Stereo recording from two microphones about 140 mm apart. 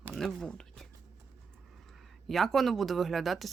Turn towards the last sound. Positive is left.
turn(degrees=0)  # may be behind; listen again after turning